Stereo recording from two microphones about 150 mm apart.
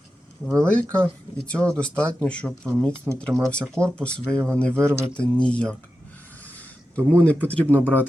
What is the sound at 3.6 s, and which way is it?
Speech, 20° right (ahead or behind).